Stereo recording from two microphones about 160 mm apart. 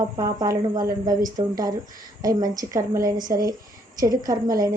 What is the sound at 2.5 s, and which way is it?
A woman's voice, 20° right (ahead or behind).